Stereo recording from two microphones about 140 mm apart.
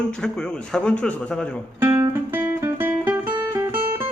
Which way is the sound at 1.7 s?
15° right (ahead or behind).